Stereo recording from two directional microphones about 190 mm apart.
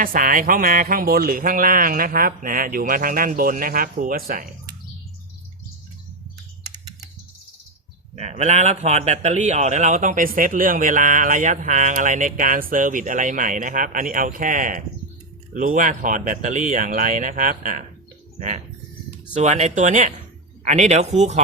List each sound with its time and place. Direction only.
0.0 s a man's voice: 45° right (ahead or behind)
8.1 s a man's voice: 35° right (ahead or behind)
18.3 s bird: 40° right (ahead or behind)
19.3 s speech: 35° right (ahead or behind)